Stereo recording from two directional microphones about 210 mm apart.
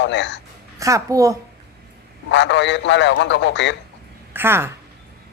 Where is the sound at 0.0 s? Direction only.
55° left (ahead or behind).